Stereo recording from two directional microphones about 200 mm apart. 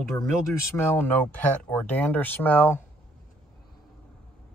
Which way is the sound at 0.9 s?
10° left (ahead or behind).